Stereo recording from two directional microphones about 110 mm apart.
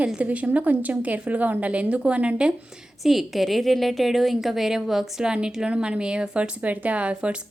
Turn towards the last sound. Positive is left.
turn(degrees=-10)  # may be behind; listen again after turning